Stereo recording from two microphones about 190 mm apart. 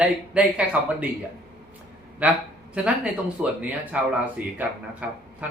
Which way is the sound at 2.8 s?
5° right (ahead or behind).